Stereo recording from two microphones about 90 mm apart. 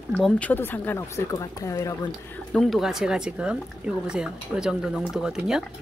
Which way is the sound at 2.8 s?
5° right (ahead or behind).